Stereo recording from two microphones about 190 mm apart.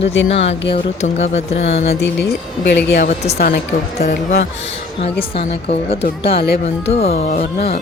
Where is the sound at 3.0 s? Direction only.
35° left (ahead or behind).